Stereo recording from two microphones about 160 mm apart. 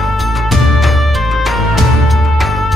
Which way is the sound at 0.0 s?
Centre (ahead or behind).